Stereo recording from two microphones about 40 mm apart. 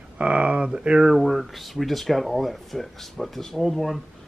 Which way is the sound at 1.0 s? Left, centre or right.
Centre.